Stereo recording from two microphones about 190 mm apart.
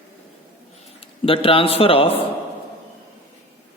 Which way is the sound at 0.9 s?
30° left (ahead or behind).